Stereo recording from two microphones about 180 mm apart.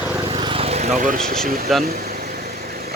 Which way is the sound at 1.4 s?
55° right (ahead or behind).